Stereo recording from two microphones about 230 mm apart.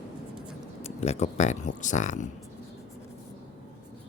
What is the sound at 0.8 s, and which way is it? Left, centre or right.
Speech, left.